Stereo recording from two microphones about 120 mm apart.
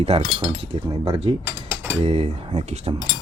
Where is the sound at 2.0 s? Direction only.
55° right (ahead or behind).